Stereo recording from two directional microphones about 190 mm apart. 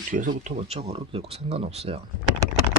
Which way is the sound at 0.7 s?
30° right (ahead or behind).